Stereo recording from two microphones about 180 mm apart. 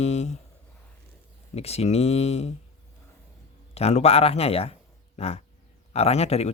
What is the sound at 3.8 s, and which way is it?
Speech, 35° left (ahead or behind).